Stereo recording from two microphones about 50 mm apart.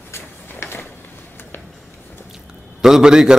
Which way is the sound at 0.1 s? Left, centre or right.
Left.